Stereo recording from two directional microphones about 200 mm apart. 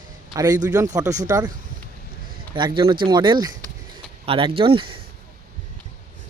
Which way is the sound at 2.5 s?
25° right (ahead or behind).